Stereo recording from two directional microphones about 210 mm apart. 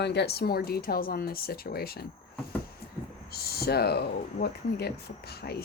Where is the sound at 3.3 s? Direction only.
50° left (ahead or behind).